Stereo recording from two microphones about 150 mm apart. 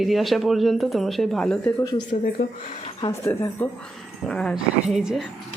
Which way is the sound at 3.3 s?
15° left (ahead or behind).